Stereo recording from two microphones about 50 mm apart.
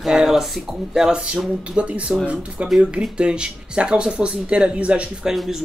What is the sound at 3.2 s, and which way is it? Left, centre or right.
Speech, right.